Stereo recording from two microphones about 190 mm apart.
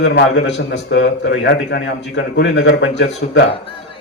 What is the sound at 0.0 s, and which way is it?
A man's voice, 65° left (ahead or behind).